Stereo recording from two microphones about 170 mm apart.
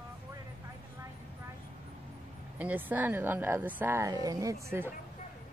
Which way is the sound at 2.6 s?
10° right (ahead or behind).